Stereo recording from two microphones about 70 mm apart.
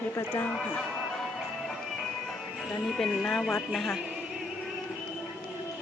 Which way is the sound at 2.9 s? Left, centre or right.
Centre.